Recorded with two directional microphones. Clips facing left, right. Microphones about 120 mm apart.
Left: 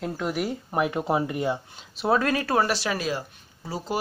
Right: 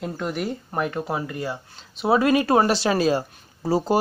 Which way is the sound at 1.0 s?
20° left (ahead or behind).